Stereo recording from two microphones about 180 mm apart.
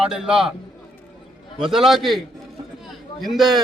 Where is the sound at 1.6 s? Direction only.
Centre (ahead or behind).